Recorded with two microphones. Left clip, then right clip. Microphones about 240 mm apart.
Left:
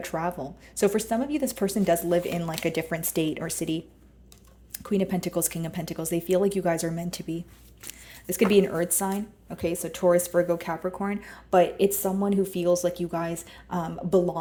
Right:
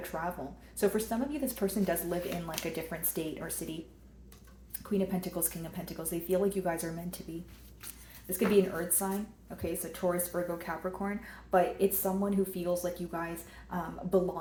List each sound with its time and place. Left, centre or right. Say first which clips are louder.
0.1 s speech: left 7 dB; left
4.8 s speech: left 6 dB; left
8.3 s speech: left 6 dB; left